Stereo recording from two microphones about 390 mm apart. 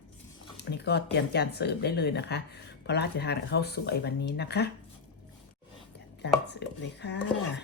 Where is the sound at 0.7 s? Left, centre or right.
Left.